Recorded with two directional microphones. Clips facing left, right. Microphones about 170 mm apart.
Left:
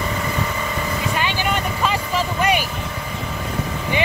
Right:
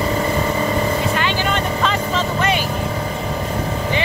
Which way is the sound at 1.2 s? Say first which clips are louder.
Right 2 dB; 15° left (ahead or behind).